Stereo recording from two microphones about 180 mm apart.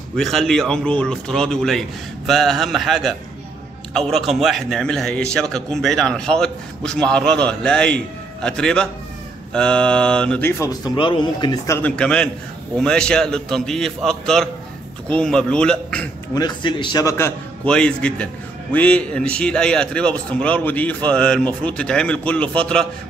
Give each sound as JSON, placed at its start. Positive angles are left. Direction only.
{"t": 0.1, "sound": "a man's voice", "side_deg": 0}
{"t": 10.6, "sound": "speech", "side_deg": 20}
{"t": 11.9, "sound": "a man's voice", "side_deg": 5}
{"t": 16.3, "sound": "speech", "side_deg": 25}
{"t": 17.6, "sound": "a man's voice", "side_deg": 5}